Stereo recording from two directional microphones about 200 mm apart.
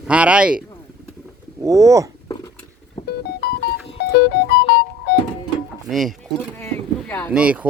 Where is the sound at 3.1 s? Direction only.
55° left (ahead or behind).